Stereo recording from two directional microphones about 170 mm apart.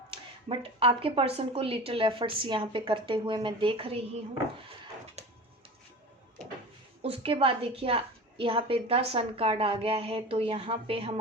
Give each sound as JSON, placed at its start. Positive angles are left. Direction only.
{"t": 0.1, "sound": "a woman's voice", "side_deg": -35}
{"t": 5.2, "sound": "a sound", "side_deg": -40}
{"t": 7.0, "sound": "a woman's voice", "side_deg": -35}